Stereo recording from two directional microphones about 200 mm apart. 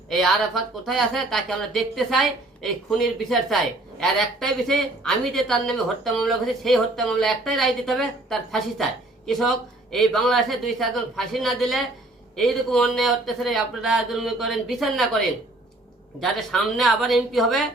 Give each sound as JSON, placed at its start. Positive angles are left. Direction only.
{"t": 0.1, "sound": "speech", "side_deg": 0}
{"t": 16.2, "sound": "speech", "side_deg": 0}